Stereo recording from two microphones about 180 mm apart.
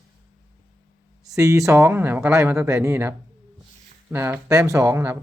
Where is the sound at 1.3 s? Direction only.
15° right (ahead or behind).